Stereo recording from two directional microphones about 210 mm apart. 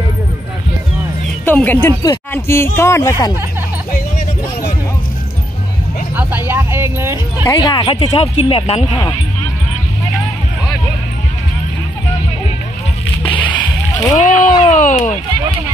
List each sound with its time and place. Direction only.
1.4 s speech: 10° left (ahead or behind)
6.1 s music: 10° right (ahead or behind)
7.4 s speech: 15° left (ahead or behind)
13.9 s speech: 35° left (ahead or behind)